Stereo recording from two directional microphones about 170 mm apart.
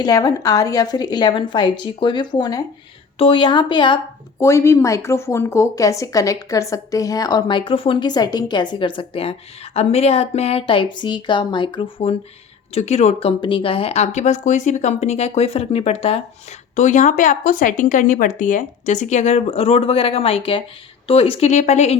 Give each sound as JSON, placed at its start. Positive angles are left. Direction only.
{"t": 0.0, "sound": "speech", "side_deg": 20}
{"t": 4.4, "sound": "speech", "side_deg": 15}